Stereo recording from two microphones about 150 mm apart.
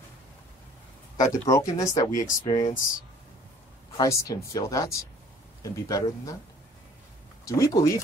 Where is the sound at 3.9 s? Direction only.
25° left (ahead or behind).